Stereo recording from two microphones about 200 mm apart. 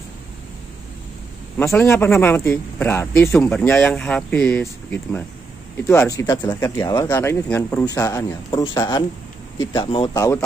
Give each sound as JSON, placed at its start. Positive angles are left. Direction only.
{"t": 1.6, "sound": "speech", "side_deg": 10}